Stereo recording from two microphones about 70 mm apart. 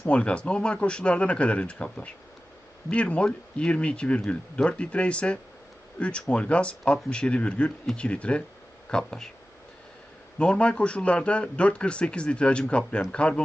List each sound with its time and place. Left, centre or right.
0.1 s speech: centre
10.3 s speech: centre